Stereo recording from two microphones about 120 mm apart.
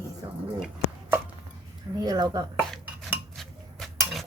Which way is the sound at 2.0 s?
35° right (ahead or behind).